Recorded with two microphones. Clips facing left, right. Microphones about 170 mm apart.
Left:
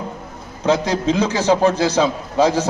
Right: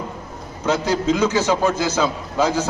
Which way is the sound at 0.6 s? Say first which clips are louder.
Left 2 dB; 30° left (ahead or behind).